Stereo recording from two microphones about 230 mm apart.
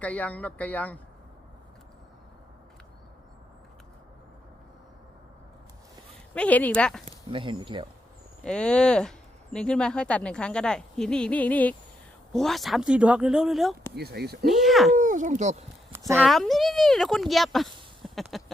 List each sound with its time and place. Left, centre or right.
0.0 s speech: centre
6.3 s speech: centre
7.0 s speech: right
8.4 s speech: centre
13.9 s speech: right
14.4 s speech: centre
14.9 s speech: right
16.1 s speech: centre